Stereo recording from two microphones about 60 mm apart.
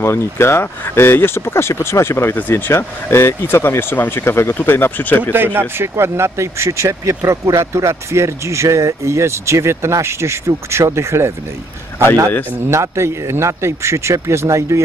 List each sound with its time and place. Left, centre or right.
0.0 s speech: left
2.3 s speech: left
2.7 s speech: left
5.3 s speech: right
12.6 s speech: right